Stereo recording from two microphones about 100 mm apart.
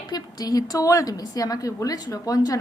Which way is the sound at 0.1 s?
40° left (ahead or behind).